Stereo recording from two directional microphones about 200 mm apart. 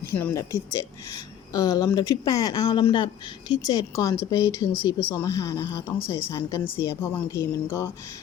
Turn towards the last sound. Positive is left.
turn(degrees=10)  # may be behind; listen again after turning